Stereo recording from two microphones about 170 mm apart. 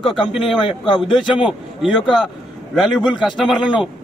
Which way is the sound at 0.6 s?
30° left (ahead or behind).